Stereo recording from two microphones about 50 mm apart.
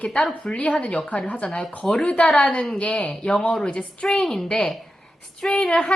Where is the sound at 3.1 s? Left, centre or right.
Left.